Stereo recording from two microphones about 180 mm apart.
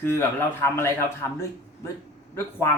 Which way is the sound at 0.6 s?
15° left (ahead or behind).